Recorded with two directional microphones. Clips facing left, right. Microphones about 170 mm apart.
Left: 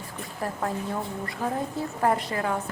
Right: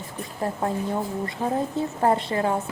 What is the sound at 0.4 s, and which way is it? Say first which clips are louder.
A woman's voice: right 4 dB; 25° right (ahead or behind).